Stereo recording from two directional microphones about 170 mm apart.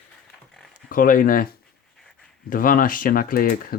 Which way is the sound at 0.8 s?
55° left (ahead or behind).